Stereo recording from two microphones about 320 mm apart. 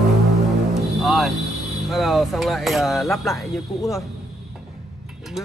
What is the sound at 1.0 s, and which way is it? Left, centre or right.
Music, centre.